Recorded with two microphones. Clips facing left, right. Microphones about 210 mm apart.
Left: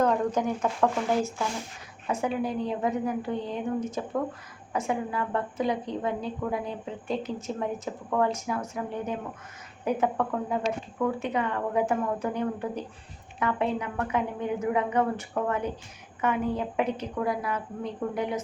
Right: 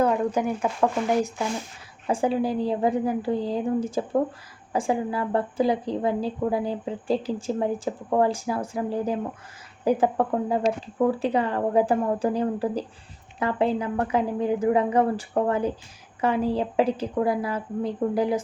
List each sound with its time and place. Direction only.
0.0 s speech: 10° right (ahead or behind)
2.0 s a woman's voice: 30° right (ahead or behind)